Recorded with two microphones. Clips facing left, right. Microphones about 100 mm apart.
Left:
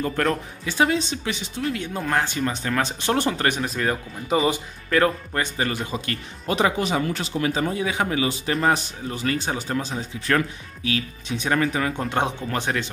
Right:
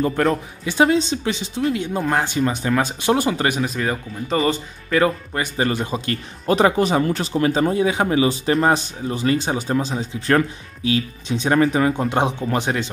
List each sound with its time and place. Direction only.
0.7 s speech: 25° right (ahead or behind); by 5.5 s 5° right (ahead or behind)
5.6 s speech: 30° right (ahead or behind)
10.2 s speech: 30° right (ahead or behind)
12.0 s speech: 15° right (ahead or behind)